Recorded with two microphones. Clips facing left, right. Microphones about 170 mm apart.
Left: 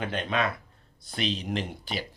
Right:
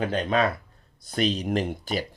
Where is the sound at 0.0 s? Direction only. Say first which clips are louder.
Right 5 dB; 40° right (ahead or behind).